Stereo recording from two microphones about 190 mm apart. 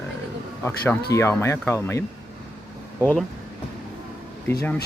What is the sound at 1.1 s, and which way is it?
Speech, 15° left (ahead or behind).